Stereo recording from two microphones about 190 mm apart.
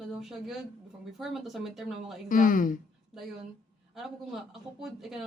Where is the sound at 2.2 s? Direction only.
45° left (ahead or behind).